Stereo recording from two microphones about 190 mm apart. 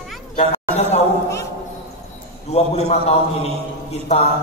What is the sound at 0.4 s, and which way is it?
Chatter, 35° left (ahead or behind).